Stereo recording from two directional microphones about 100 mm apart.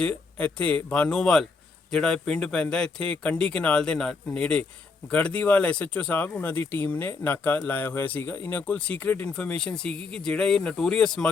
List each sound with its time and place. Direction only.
0.0 s speech: 15° left (ahead or behind)